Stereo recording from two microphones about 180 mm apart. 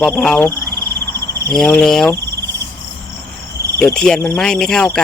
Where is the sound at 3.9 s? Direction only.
5° left (ahead or behind).